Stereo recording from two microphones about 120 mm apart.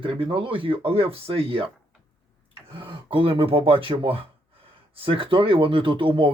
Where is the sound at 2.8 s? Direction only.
45° right (ahead or behind).